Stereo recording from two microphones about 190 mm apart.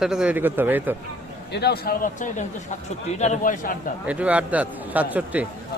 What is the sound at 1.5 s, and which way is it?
Speech, 60° left (ahead or behind).